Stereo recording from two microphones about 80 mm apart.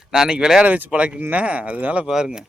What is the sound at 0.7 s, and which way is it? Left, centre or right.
Speech, right.